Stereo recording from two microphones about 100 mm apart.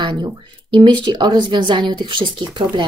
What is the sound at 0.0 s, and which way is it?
Speech, 45° right (ahead or behind).